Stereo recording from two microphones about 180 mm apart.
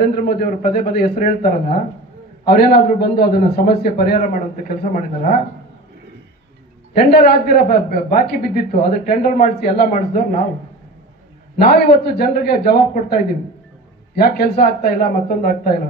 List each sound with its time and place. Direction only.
0.0 s speech: 55° left (ahead or behind)
7.0 s speech: 60° left (ahead or behind)
11.6 s speech: 60° left (ahead or behind)